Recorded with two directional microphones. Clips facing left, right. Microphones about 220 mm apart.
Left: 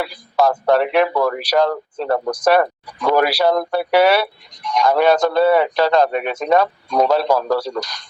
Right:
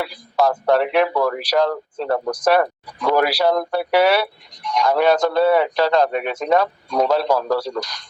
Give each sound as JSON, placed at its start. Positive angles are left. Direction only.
{"t": 0.0, "sound": "speech", "side_deg": 65}